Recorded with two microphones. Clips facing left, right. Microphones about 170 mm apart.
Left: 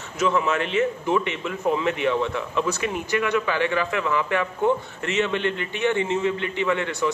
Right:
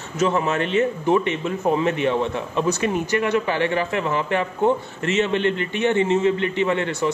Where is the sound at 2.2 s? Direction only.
20° right (ahead or behind).